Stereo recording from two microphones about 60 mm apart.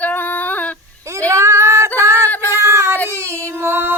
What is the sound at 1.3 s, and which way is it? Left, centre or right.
Female singing, right.